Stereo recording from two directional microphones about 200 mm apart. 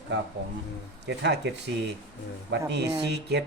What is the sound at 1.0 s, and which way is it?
Speech, 60° right (ahead or behind).